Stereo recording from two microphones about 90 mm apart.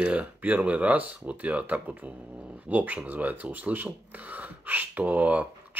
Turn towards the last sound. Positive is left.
turn(degrees=-15)  # may be behind; listen again after turning